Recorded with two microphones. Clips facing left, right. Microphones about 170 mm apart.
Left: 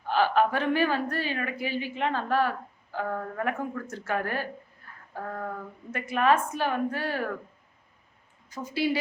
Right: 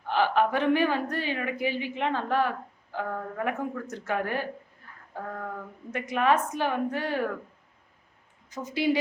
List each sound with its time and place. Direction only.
0.1 s a woman's voice: 15° right (ahead or behind)
5.1 s a sound: 5° left (ahead or behind)
5.9 s a woman's voice: 15° right (ahead or behind)
8.4 s a woman's voice: 20° right (ahead or behind)